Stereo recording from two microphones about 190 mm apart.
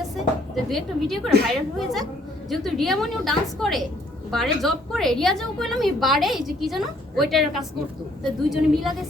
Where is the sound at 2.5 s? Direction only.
Centre (ahead or behind).